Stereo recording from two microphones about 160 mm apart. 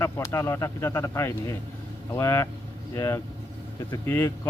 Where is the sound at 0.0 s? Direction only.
20° left (ahead or behind).